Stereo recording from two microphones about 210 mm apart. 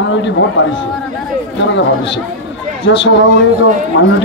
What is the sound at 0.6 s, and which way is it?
Speech, 65° left (ahead or behind).